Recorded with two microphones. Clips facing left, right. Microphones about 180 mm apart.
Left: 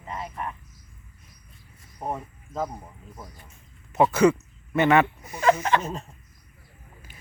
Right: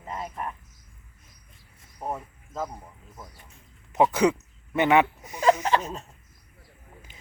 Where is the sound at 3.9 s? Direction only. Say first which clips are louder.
Left 2 dB; 15° right (ahead or behind).